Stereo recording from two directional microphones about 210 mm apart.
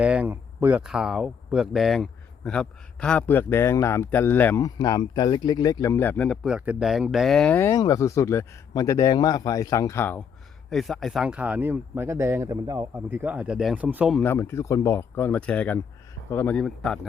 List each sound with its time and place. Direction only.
0.0 s speech: 5° right (ahead or behind)
14.2 s a man's voice: 10° left (ahead or behind)